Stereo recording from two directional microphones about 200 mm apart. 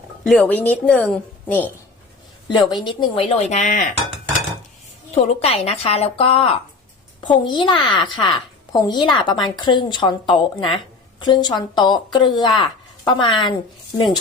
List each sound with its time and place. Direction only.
0.3 s a woman's voice: 10° left (ahead or behind)
2.5 s speech: 20° left (ahead or behind); by 4.0 s 40° left (ahead or behind)
5.1 s a woman's voice: 30° left (ahead or behind)